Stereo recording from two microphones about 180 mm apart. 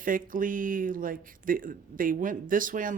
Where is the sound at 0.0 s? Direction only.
50° right (ahead or behind).